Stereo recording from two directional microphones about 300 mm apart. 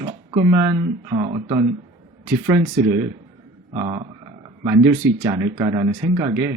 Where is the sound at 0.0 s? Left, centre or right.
Centre.